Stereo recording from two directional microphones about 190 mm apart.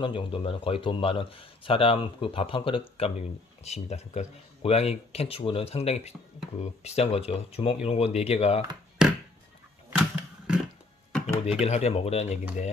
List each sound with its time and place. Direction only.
0.0 s speech: 25° left (ahead or behind)
9.0 s a sound: 5° right (ahead or behind)
11.1 s computer keyboard: 5° left (ahead or behind)
11.6 s speech: 35° left (ahead or behind)